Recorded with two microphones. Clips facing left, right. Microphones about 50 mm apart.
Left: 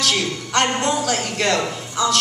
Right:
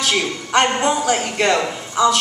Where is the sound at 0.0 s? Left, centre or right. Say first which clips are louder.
Right 1 dB; centre.